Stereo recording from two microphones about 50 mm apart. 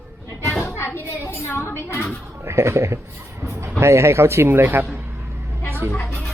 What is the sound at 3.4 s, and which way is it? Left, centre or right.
Music, right.